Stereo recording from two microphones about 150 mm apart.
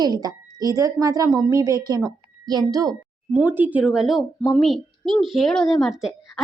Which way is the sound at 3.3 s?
10° right (ahead or behind).